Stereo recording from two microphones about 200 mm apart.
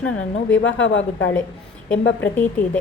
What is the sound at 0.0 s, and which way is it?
Speech, 70° left (ahead or behind).